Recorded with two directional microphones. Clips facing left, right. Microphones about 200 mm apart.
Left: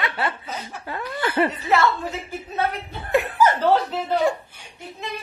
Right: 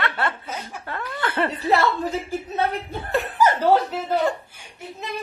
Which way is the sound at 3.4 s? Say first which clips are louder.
Right 2 dB; 10° right (ahead or behind).